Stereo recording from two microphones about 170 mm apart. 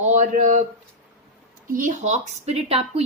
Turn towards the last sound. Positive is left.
turn(degrees=-35)  # may be behind; listen again after turning